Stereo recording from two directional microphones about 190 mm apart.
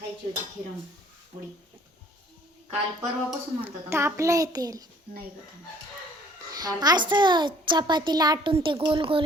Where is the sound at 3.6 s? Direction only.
10° right (ahead or behind).